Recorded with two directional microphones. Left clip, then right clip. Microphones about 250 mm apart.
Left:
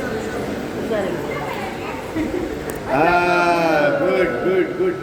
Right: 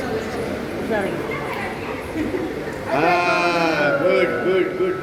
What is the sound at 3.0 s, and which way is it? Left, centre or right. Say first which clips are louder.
Sheep: left 2 dB; left.